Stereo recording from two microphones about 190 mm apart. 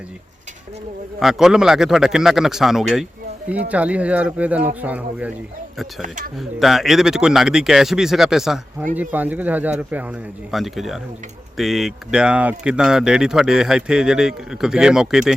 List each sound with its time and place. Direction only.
1.2 s speech: centre (ahead or behind)
6.0 s speech: 40° right (ahead or behind)
6.4 s speech: centre (ahead or behind)